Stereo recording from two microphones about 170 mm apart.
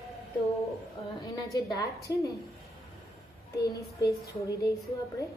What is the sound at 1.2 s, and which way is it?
A woman's voice, 25° left (ahead or behind).